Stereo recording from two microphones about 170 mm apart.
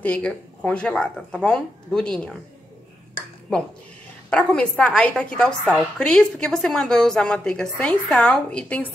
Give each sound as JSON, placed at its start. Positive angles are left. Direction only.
{"t": 0.0, "sound": "a woman's voice", "side_deg": 5}
{"t": 4.3, "sound": "a woman's voice", "side_deg": 5}